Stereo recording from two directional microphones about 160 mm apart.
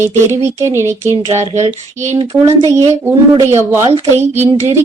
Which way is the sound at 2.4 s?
20° right (ahead or behind).